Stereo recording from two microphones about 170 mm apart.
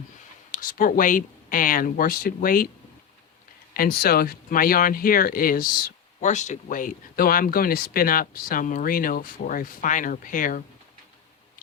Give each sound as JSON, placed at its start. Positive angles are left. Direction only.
{"t": 0.5, "sound": "speech", "side_deg": 55}
{"t": 3.8, "sound": "speech", "side_deg": 60}
{"t": 6.1, "sound": "speech", "side_deg": 45}